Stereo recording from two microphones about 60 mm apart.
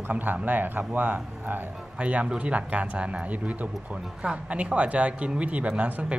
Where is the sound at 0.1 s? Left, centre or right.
Right.